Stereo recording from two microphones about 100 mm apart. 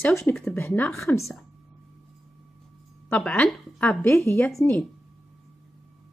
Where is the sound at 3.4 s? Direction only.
5° left (ahead or behind).